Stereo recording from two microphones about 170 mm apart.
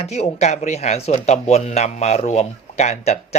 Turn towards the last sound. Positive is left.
turn(degrees=40)  # may be behind; listen again after turning